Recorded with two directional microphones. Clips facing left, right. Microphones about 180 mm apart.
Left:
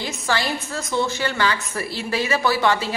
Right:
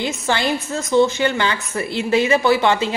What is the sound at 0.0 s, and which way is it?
A woman's voice, 20° right (ahead or behind).